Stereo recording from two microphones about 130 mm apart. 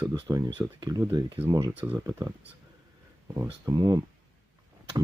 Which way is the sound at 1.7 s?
15° right (ahead or behind).